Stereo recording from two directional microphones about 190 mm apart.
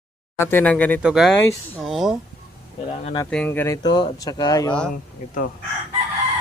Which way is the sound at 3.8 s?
20° left (ahead or behind).